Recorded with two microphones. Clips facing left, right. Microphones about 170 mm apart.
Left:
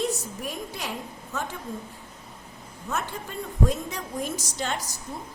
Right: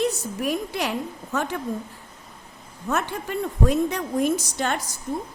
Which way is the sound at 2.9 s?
70° right (ahead or behind).